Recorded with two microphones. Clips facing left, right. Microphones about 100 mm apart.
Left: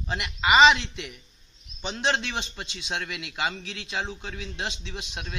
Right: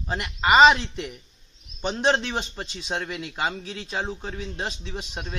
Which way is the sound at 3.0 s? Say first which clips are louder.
Right 4 dB; 30° right (ahead or behind).